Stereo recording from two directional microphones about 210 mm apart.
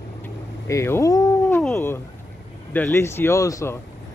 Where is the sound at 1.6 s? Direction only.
10° left (ahead or behind).